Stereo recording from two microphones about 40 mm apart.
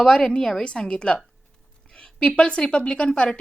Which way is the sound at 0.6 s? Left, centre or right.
Left.